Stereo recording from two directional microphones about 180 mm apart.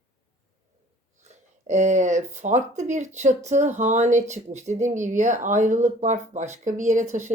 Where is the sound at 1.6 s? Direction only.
40° right (ahead or behind).